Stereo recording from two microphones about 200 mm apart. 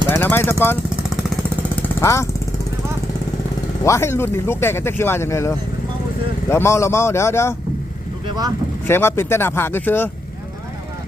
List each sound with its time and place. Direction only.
0.1 s speech: 10° left (ahead or behind)
2.0 s speech: 15° left (ahead or behind)
3.8 s speech: 15° left (ahead or behind)
8.3 s speech: 20° right (ahead or behind)
8.9 s speech: 10° left (ahead or behind)